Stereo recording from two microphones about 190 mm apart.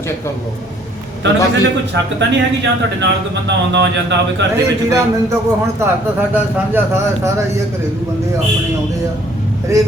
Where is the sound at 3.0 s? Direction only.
65° right (ahead or behind).